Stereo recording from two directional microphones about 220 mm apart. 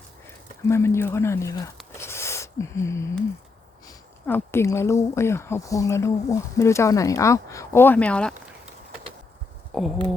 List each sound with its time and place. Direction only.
0.7 s speech: 10° left (ahead or behind)
2.0 s a sound: 10° left (ahead or behind)
3.8 s speech: 10° left (ahead or behind)
9.7 s speech: centre (ahead or behind)